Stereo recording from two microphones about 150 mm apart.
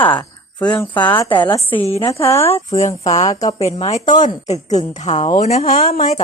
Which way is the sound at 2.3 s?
40° left (ahead or behind).